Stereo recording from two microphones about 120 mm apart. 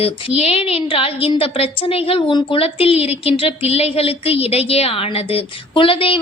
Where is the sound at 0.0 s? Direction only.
55° left (ahead or behind).